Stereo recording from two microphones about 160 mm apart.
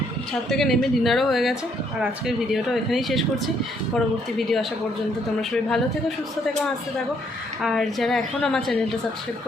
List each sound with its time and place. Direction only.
0.5 s speech: centre (ahead or behind)
7.6 s speech: centre (ahead or behind)